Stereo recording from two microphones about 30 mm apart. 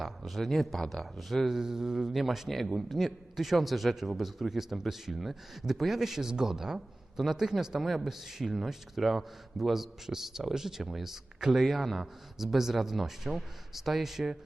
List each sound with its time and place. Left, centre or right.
0.0 s speech: centre
1.5 s a man's voice: centre
2.1 s a man's voice: centre
11.6 s a man's voice: centre